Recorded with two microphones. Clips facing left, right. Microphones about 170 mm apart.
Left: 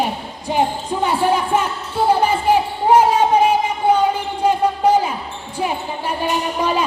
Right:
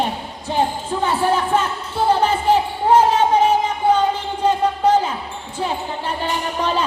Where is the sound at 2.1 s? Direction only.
10° left (ahead or behind).